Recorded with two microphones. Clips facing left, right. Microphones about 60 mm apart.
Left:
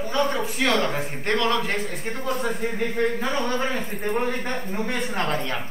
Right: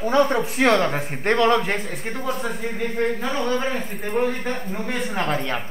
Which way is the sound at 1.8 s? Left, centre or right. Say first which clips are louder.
Even; centre.